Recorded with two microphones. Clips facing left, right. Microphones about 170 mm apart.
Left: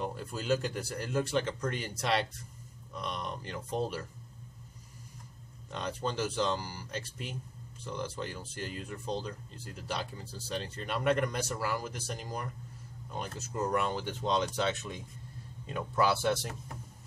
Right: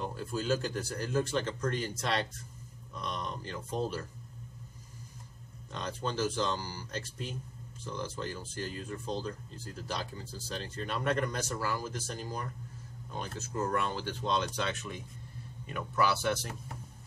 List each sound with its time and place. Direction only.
0.0 s speech: 10° left (ahead or behind)
5.7 s speech: 10° left (ahead or behind)